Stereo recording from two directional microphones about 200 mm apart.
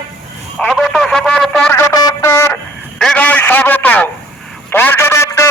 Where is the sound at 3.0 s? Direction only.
5° left (ahead or behind).